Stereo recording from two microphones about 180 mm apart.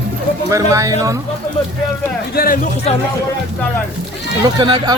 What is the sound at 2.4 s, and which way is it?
Speech, 55° left (ahead or behind).